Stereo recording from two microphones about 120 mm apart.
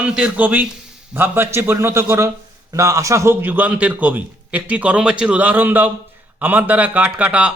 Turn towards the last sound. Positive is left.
turn(degrees=-10)  # may be behind; listen again after turning